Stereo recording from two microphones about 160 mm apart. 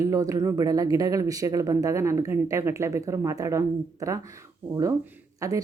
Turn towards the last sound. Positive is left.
turn(degrees=-20)  # may be behind; listen again after turning